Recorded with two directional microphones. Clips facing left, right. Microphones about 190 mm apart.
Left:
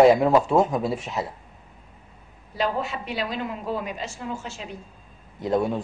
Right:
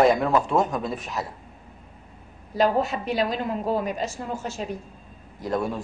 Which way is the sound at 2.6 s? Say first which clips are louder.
Right 5 dB; 40° right (ahead or behind).